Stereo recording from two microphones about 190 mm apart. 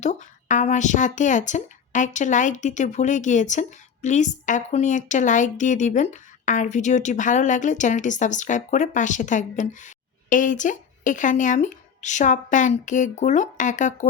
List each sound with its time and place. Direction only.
0.0 s speech: 40° left (ahead or behind)